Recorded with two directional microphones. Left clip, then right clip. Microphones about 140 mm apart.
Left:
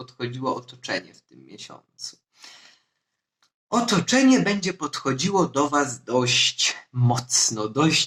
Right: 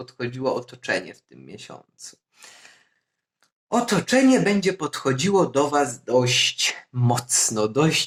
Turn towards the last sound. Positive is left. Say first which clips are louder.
# right 1 dB
turn(degrees=-35)  # may be behind; listen again after turning